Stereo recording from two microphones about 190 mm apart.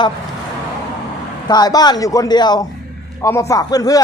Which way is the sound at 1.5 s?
20° left (ahead or behind).